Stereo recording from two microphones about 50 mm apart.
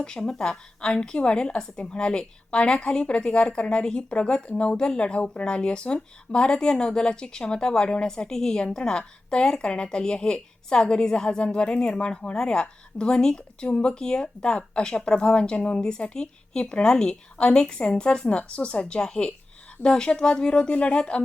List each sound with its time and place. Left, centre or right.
0.0 s a woman's voice: centre